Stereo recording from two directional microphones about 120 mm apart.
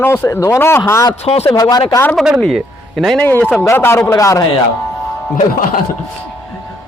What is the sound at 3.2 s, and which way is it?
A man's voice, 15° left (ahead or behind).